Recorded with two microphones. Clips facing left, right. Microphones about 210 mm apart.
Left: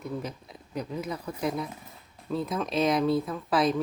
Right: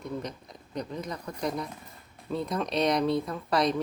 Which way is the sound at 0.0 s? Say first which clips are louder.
Left 1 dB; 5° left (ahead or behind).